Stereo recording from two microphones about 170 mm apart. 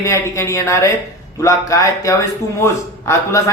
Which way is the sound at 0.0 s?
15° left (ahead or behind).